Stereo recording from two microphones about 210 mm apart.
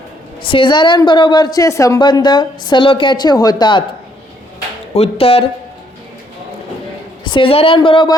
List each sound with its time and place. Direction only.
0.4 s a woman's voice: 25° left (ahead or behind)
4.9 s a woman's voice: 30° left (ahead or behind)
7.3 s a woman's voice: 25° left (ahead or behind)